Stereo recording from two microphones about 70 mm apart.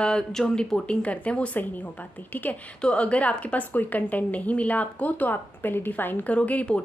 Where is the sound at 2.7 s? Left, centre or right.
Centre.